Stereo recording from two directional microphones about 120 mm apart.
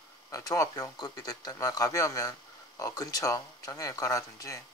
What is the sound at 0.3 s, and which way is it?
Speech, 25° left (ahead or behind).